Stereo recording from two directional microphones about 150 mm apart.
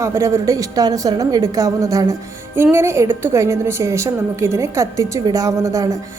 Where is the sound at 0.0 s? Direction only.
20° right (ahead or behind).